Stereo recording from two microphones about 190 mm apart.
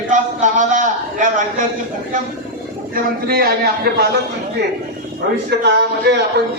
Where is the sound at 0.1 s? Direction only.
40° right (ahead or behind).